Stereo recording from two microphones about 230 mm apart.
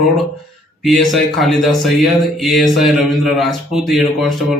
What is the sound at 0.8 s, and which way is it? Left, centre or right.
Speech, centre.